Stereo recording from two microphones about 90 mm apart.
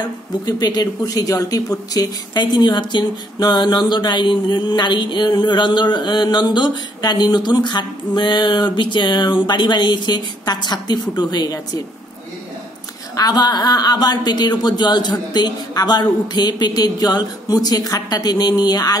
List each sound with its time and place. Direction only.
0.5 s speech: 50° left (ahead or behind)
13.1 s a woman's voice: 45° left (ahead or behind)